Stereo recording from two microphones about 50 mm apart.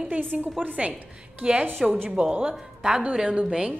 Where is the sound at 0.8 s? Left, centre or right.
Centre.